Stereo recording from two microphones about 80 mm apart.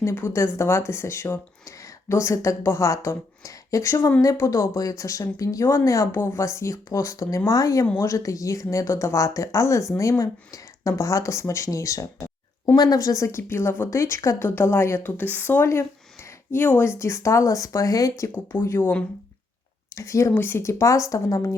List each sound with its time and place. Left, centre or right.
0.0 s speech: left
18.8 s speech: left
20.0 s speech: left
20.3 s speech: left